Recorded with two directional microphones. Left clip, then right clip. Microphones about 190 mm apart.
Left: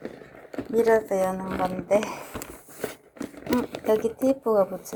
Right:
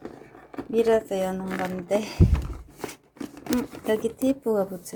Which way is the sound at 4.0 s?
25° right (ahead or behind).